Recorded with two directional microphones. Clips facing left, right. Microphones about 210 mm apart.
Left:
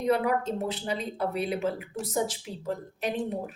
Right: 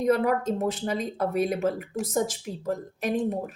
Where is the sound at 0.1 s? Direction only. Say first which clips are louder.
Right 1 dB; 45° right (ahead or behind).